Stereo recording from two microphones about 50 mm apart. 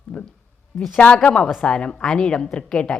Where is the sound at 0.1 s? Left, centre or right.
Left.